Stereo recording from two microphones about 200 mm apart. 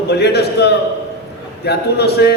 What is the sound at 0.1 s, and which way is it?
A man's voice, 55° left (ahead or behind).